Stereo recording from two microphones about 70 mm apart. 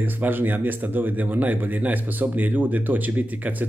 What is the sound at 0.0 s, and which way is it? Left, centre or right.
Speech, right.